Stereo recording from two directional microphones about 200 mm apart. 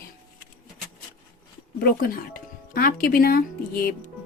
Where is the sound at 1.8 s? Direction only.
45° left (ahead or behind).